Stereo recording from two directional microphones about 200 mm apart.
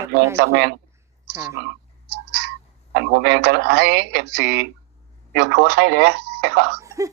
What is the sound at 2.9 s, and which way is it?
Speech, 60° right (ahead or behind).